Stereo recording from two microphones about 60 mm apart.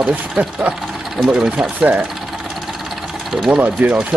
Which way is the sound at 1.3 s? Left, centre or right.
Centre.